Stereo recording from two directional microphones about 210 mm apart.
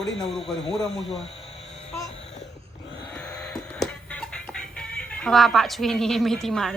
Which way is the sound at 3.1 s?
5° left (ahead or behind).